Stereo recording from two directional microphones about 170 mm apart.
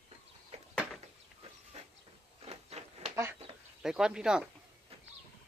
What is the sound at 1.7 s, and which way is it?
Train, 40° right (ahead or behind).